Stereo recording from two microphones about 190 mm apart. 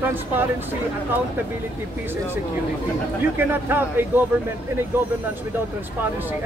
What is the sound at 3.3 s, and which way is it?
Speech, 10° right (ahead or behind).